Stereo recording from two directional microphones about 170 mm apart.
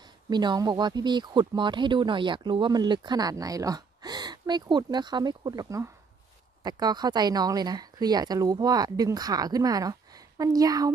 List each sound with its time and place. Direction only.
0.3 s speech: 25° right (ahead or behind)